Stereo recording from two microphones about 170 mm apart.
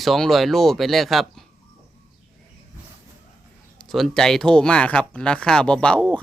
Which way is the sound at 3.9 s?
Centre (ahead or behind).